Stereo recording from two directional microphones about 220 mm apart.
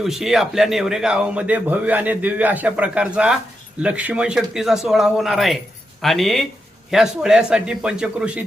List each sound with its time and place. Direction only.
0.0 s speech: centre (ahead or behind)